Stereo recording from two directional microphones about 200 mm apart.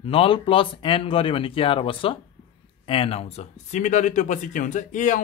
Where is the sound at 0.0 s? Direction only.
25° left (ahead or behind).